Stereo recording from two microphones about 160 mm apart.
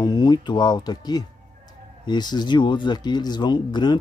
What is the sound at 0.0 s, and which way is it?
Speech, 25° left (ahead or behind).